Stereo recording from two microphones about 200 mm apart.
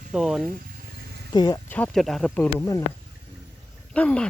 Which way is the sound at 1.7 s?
5° left (ahead or behind).